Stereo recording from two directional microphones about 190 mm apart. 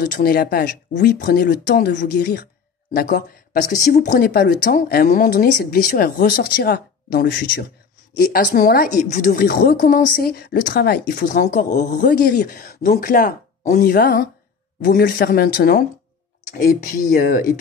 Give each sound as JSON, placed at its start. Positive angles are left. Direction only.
{"t": 0.0, "sound": "a woman's voice", "side_deg": 50}
{"t": 4.2, "sound": "a woman's voice", "side_deg": 50}
{"t": 13.9, "sound": "a woman's voice", "side_deg": 60}